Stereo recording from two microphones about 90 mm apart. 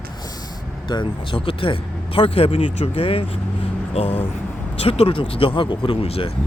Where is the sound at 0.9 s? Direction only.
60° left (ahead or behind); by 3.2 s 90° left.